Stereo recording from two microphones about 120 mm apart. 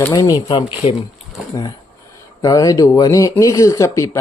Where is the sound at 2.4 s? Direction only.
30° left (ahead or behind).